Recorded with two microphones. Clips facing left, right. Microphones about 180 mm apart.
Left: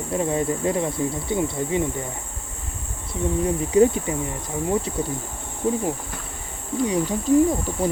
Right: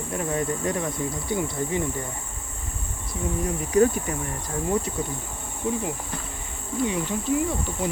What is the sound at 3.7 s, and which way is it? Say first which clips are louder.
Speech: left 2 dB; 20° left (ahead or behind).